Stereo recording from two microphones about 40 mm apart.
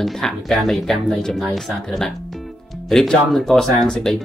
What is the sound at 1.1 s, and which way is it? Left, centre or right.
Speech, centre.